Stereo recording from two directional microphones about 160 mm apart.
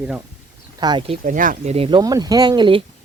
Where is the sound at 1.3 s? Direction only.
55° right (ahead or behind).